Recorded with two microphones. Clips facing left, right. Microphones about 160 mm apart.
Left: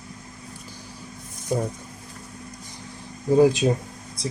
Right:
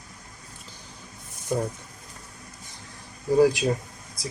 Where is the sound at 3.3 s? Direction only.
20° left (ahead or behind).